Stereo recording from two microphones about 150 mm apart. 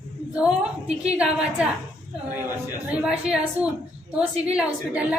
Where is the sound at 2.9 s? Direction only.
5° right (ahead or behind).